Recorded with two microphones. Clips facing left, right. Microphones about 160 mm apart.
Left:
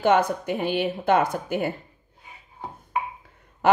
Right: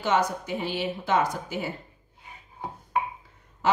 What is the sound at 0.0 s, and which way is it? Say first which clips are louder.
A woman's voice: left 5 dB; 55° left (ahead or behind).